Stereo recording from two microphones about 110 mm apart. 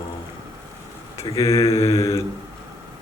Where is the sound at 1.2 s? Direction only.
30° left (ahead or behind).